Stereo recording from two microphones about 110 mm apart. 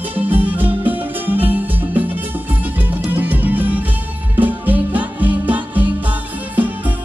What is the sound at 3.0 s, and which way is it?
Music, 15° right (ahead or behind).